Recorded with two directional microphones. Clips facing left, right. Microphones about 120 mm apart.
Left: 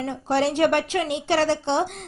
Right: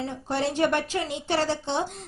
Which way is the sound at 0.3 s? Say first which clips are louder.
Left 5 dB; 80° left.